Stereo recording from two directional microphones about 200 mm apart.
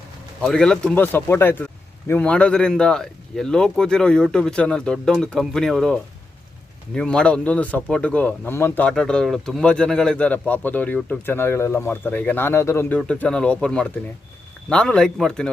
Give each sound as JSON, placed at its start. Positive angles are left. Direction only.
{"t": 0.4, "sound": "speech", "side_deg": 5}